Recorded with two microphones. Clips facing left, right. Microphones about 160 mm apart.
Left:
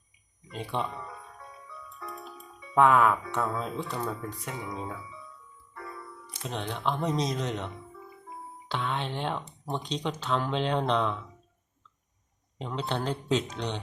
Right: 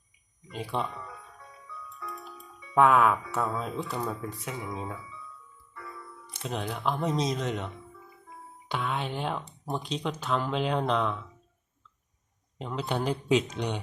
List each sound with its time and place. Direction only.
0.5 s speech: centre (ahead or behind)
2.0 s music: 30° left (ahead or behind)
2.7 s speech: centre (ahead or behind)
6.4 s speech: 5° right (ahead or behind)
8.7 s speech: 5° right (ahead or behind)
12.5 s speech: 5° right (ahead or behind)